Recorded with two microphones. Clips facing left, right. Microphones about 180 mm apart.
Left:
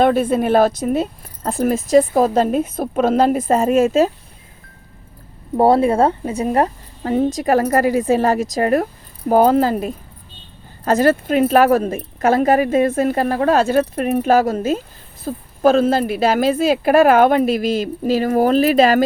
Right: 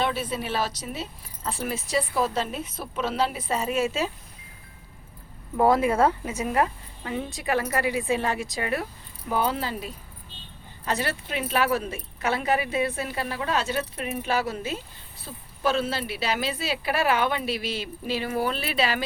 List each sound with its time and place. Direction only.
0.0 s speech: 50° left (ahead or behind)
5.5 s speech: 30° left (ahead or behind)